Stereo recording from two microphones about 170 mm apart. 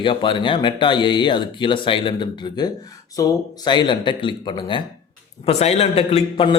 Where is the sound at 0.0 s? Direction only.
30° left (ahead or behind).